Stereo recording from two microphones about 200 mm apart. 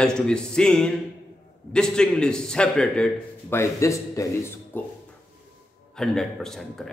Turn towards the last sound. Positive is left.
turn(degrees=0)  # may be behind; listen again after turning